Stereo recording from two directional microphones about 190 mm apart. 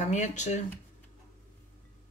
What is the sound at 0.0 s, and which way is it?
Speech, 40° left (ahead or behind).